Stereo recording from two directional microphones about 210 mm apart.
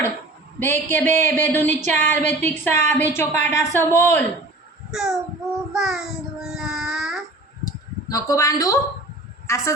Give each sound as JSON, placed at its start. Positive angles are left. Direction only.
{"t": 0.6, "sound": "speech", "side_deg": 10}
{"t": 4.9, "sound": "child singing", "side_deg": 0}
{"t": 7.6, "sound": "a sound", "side_deg": 15}
{"t": 9.5, "sound": "speech", "side_deg": 15}